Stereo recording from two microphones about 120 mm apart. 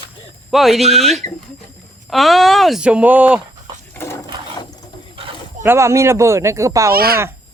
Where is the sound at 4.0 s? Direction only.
20° left (ahead or behind).